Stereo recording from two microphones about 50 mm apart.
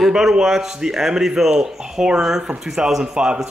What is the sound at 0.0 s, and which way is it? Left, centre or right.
Speech, centre.